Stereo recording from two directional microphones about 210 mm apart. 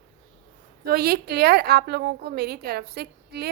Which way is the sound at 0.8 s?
45° right (ahead or behind).